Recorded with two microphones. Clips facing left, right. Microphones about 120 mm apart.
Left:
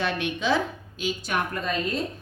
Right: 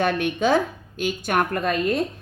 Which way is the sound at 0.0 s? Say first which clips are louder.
Right 6 dB; 50° right (ahead or behind).